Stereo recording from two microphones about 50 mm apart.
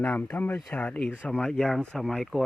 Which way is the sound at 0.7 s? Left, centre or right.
Left.